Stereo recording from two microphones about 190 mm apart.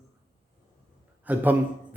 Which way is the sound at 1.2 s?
10° right (ahead or behind).